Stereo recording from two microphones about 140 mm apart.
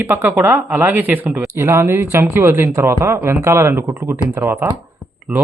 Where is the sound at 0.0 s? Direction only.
15° right (ahead or behind).